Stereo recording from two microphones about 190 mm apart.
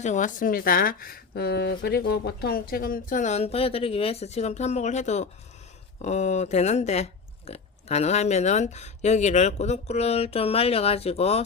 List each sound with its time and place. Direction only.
0.0 s speech: 40° left (ahead or behind)